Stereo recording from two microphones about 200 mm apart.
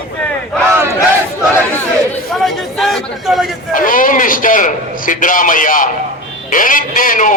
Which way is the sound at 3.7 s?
40° left (ahead or behind).